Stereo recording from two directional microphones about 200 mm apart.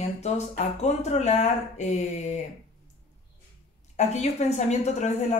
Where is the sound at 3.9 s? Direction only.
35° left (ahead or behind).